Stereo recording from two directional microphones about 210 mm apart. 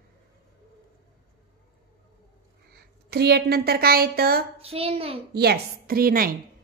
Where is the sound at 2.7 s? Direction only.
50° right (ahead or behind).